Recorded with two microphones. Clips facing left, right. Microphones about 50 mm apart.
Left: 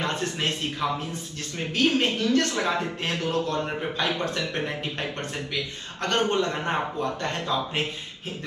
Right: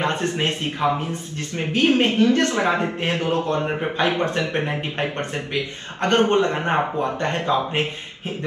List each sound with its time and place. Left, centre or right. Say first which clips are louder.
0.0 s a man's voice: right 5 dB; right